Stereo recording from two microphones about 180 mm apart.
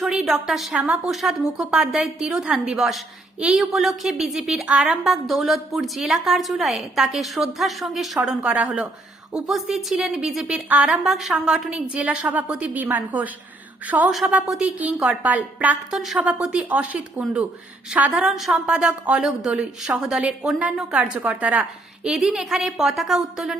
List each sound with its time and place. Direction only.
0.0 s a woman's voice: 5° right (ahead or behind)